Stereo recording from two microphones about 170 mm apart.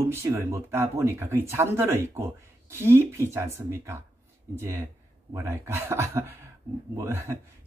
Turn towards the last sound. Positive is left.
turn(degrees=-15)  # may be behind; listen again after turning